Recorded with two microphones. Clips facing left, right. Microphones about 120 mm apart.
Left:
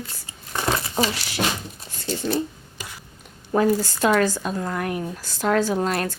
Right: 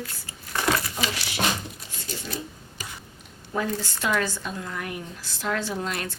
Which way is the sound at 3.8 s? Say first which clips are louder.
Left 7 dB; 40° left (ahead or behind).